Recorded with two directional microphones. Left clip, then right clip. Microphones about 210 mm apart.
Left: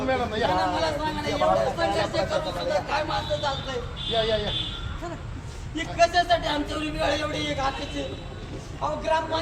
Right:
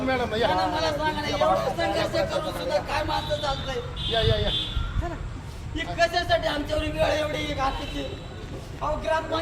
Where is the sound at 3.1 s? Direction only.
5° right (ahead or behind).